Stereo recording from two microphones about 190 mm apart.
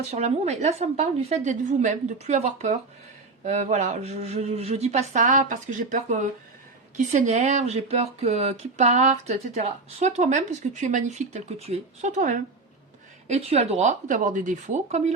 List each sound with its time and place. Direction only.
0.1 s speech: 35° right (ahead or behind)